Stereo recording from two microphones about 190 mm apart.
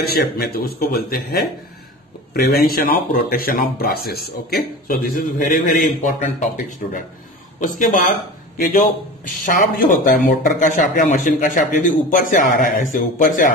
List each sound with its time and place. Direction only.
0.0 s a man's voice: 55° left (ahead or behind)
8.5 s a man's voice: 45° left (ahead or behind)